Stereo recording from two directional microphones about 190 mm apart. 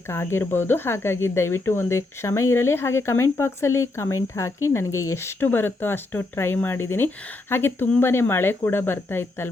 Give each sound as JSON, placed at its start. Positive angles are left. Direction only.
{"t": 0.1, "sound": "speech", "side_deg": 15}